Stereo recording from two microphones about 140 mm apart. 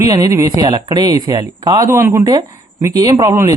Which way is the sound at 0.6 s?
30° right (ahead or behind).